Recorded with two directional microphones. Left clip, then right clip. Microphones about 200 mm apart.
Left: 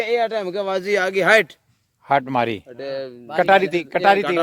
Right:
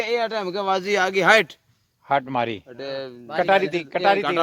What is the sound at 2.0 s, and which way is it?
Speech, 55° left (ahead or behind).